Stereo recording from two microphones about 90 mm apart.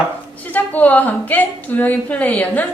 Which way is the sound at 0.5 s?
15° left (ahead or behind).